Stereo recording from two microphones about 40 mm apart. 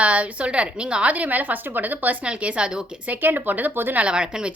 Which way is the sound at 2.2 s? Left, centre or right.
Right.